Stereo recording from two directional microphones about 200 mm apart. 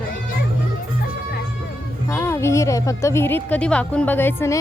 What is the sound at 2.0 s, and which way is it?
A woman's voice, 10° left (ahead or behind).